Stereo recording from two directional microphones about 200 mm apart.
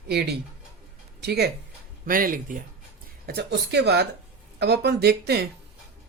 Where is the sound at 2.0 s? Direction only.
45° right (ahead or behind).